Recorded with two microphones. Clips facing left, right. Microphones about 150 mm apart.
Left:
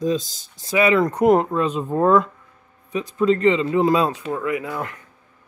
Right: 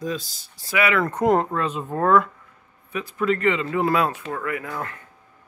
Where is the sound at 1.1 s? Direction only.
15° left (ahead or behind).